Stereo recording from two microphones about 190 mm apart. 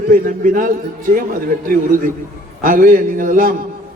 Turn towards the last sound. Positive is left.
turn(degrees=-45)  # may be behind; listen again after turning